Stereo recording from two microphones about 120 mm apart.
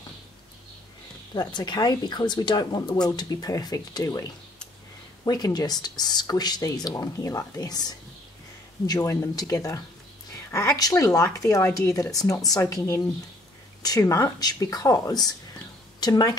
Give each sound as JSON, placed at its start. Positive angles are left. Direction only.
{"t": 1.3, "sound": "speech", "side_deg": 35}